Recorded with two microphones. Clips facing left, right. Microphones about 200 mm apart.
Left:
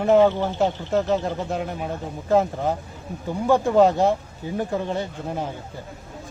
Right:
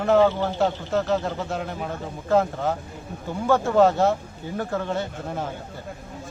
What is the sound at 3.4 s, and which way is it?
A man's voice, 15° left (ahead or behind).